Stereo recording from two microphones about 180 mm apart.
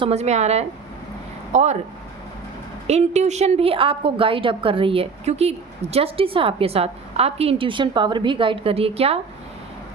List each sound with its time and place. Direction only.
0.0 s a woman's voice: 35° right (ahead or behind)
2.8 s a woman's voice: 40° right (ahead or behind)